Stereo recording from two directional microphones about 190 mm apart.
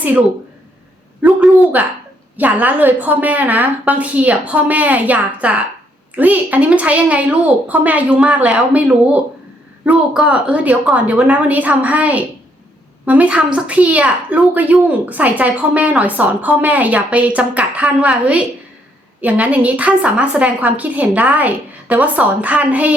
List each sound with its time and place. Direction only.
0.0 s a woman's voice: 10° right (ahead or behind)